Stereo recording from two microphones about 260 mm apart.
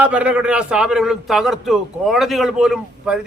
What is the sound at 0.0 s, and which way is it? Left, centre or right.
A man's voice, centre.